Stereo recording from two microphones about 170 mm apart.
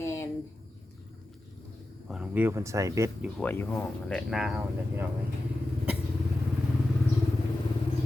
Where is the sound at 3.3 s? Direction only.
10° left (ahead or behind).